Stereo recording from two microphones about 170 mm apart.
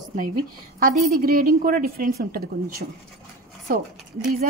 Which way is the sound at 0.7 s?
55° right (ahead or behind).